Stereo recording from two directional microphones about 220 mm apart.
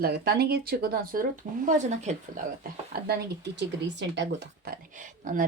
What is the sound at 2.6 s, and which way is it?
Speech, 45° right (ahead or behind).